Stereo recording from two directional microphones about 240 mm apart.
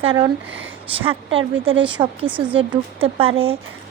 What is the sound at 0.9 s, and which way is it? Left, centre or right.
A woman's voice, right.